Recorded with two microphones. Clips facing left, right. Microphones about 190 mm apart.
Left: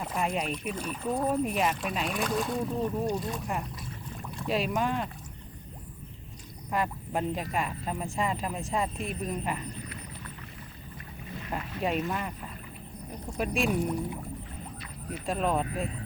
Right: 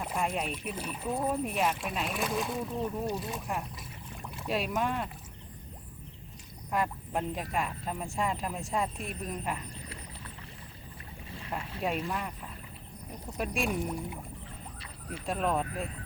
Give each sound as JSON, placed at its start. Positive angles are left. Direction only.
{"t": 0.0, "sound": "speech", "side_deg": 0}
{"t": 4.1, "sound": "boat", "side_deg": -5}
{"t": 6.7, "sound": "speech", "side_deg": 0}
{"t": 11.3, "sound": "boat", "side_deg": -30}
{"t": 11.8, "sound": "speech", "side_deg": 0}
{"t": 13.3, "sound": "speech", "side_deg": 0}
{"t": 15.3, "sound": "speech", "side_deg": 0}